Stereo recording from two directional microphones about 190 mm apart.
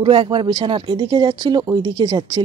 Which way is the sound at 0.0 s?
25° right (ahead or behind).